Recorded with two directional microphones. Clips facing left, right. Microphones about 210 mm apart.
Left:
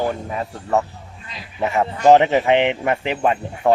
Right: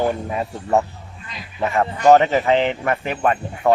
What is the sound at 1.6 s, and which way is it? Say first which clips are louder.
Speech: even; 5° left (ahead or behind).